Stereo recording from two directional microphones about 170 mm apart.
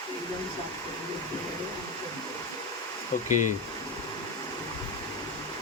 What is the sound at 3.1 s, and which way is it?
Speech, 50° left (ahead or behind).